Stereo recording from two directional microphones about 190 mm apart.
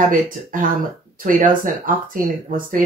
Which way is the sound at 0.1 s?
45° right (ahead or behind).